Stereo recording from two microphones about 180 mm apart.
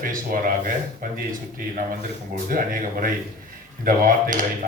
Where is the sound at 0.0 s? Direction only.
50° right (ahead or behind).